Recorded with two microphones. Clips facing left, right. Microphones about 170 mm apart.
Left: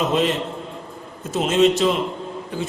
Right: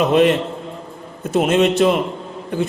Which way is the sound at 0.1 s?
60° right (ahead or behind).